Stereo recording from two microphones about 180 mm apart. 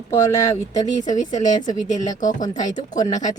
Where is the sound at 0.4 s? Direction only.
20° left (ahead or behind).